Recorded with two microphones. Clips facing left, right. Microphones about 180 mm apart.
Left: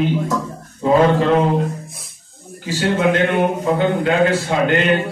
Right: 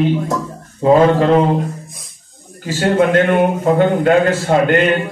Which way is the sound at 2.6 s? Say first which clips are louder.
Right 3 dB; 45° right (ahead or behind).